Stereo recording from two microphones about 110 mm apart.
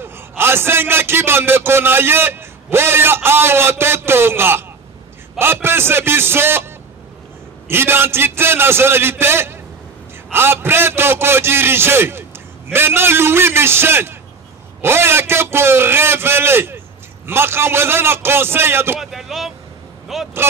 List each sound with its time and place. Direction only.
0.0 s a man's voice: 20° right (ahead or behind)
18.9 s speech: centre (ahead or behind)